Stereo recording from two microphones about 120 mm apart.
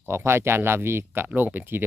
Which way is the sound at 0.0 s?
20° right (ahead or behind).